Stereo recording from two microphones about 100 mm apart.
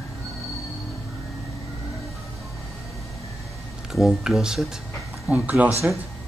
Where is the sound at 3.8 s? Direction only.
5° right (ahead or behind).